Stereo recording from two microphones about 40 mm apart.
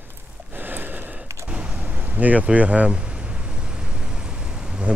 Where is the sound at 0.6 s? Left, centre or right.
Right.